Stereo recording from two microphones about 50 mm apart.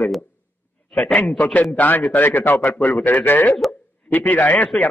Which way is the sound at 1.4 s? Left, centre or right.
Left.